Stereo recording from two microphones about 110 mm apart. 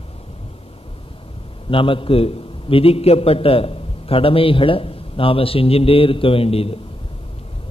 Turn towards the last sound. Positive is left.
turn(degrees=60)  # may be behind; listen again after turning